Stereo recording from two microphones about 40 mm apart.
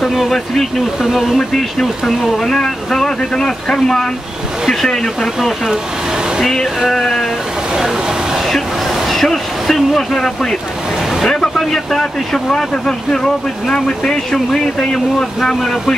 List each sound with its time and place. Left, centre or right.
0.0 s speech: centre
6.9 s speech: centre
9.1 s a sound: centre
11.2 s speech: centre